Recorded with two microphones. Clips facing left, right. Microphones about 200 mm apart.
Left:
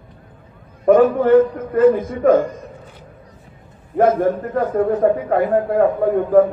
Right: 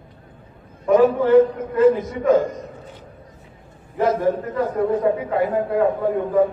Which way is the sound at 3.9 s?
55° left (ahead or behind).